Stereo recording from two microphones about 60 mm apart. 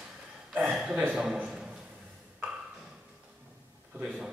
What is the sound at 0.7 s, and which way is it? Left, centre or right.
Speech, centre.